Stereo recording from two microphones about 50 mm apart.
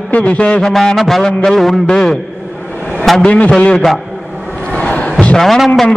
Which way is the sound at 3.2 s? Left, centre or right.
Left.